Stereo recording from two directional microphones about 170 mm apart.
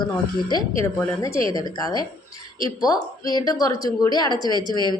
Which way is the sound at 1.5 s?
20° left (ahead or behind).